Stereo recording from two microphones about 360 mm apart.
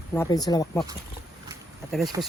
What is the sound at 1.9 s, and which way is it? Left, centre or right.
Speech, centre.